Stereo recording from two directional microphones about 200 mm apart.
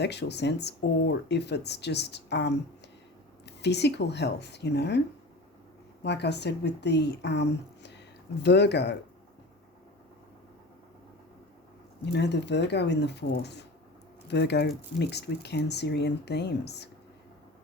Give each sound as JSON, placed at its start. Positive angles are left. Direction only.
{"t": 0.0, "sound": "speech", "side_deg": 60}
{"t": 6.0, "sound": "speech", "side_deg": 55}
{"t": 12.0, "sound": "speech", "side_deg": 60}